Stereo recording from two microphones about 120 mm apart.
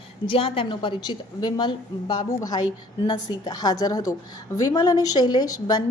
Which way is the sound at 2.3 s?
30° left (ahead or behind).